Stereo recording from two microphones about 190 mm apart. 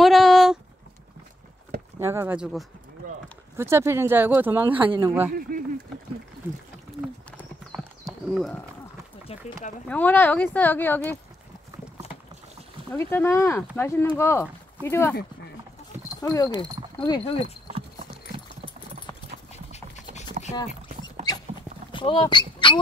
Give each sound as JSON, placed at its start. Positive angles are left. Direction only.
{"t": 0.0, "sound": "a sound", "side_deg": 0}
{"t": 2.0, "sound": "speech", "side_deg": -10}
{"t": 4.7, "sound": "a man's voice", "side_deg": -25}
{"t": 5.5, "sound": "speech", "side_deg": -50}
{"t": 7.2, "sound": "clip-clop", "side_deg": 5}
{"t": 9.3, "sound": "a sound", "side_deg": 30}
{"t": 9.8, "sound": "speech", "side_deg": 10}
{"t": 12.9, "sound": "speech", "side_deg": 15}
{"t": 16.2, "sound": "speech", "side_deg": 20}
{"t": 17.6, "sound": "clip-clop", "side_deg": -30}
{"t": 19.5, "sound": "a sound", "side_deg": 35}
{"t": 21.3, "sound": "clip-clop", "side_deg": 20}
{"t": 21.9, "sound": "speech", "side_deg": 25}